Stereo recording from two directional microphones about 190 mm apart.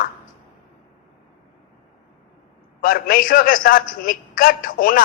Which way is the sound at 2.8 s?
50° left (ahead or behind).